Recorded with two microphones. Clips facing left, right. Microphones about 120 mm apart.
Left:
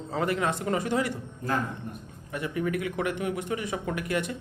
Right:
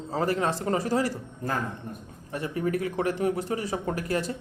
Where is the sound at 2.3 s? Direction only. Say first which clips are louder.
Right 1 dB; 30° right (ahead or behind).